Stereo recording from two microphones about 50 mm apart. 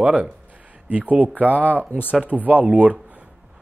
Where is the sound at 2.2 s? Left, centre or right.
Right.